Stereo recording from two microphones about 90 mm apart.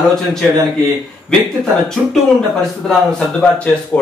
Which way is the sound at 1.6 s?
5° left (ahead or behind).